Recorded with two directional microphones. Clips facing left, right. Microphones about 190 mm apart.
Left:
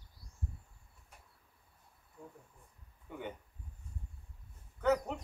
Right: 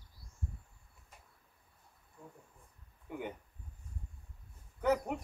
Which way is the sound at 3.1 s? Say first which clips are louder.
Right 2 dB; 10° right (ahead or behind).